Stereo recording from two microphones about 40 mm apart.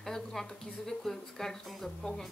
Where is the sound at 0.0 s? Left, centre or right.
Centre.